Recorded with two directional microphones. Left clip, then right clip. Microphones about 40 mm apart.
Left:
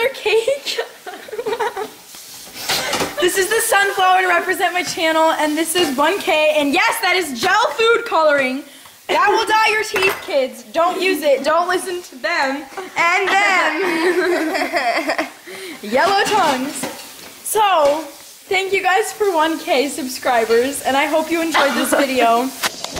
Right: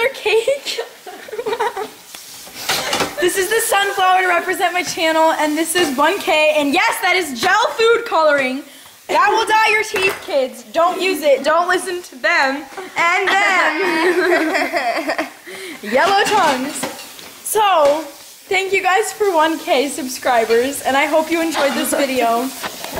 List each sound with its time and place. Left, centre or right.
0.0 s a woman's voice: centre
1.3 s a sound: centre
3.1 s a woman's voice: centre
9.9 s speech: centre
10.2 s a woman's voice: centre
12.5 s a woman's voice: centre